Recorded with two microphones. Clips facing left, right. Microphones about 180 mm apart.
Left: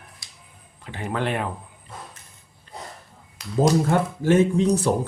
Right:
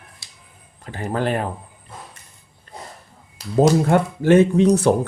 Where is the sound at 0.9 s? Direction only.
40° right (ahead or behind).